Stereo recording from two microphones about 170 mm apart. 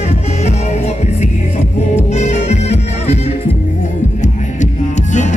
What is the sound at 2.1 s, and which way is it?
Music, 40° left (ahead or behind).